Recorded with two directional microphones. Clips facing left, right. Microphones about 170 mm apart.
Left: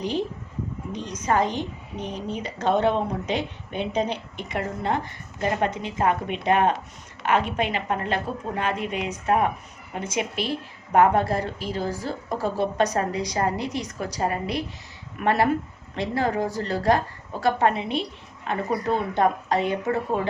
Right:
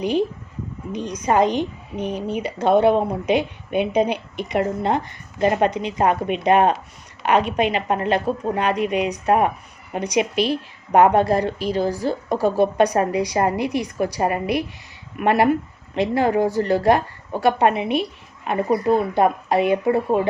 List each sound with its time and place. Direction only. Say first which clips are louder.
0.0 s a woman's voice: right 6 dB; 10° right (ahead or behind)
10.3 s a woman's voice: right 7 dB; 80° right
10.9 s a woman's voice: right 4 dB; 20° right (ahead or behind)
12.4 s a woman's voice: right 6 dB; 15° right (ahead or behind)